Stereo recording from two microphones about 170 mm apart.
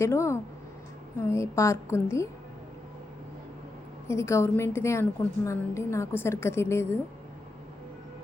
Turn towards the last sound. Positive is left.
turn(degrees=15)  # may be behind; listen again after turning